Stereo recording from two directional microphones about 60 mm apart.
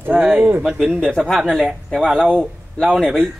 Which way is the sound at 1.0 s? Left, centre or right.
Centre.